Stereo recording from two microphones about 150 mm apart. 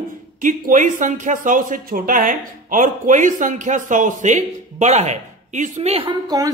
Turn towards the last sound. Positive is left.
turn(degrees=-25)  # may be behind; listen again after turning